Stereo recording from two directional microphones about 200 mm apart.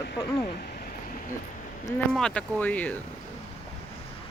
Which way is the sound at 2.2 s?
5° left (ahead or behind).